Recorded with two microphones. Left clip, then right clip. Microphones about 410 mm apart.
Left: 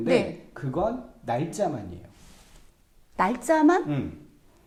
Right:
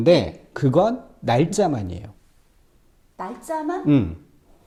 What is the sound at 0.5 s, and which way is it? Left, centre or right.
Speech, right.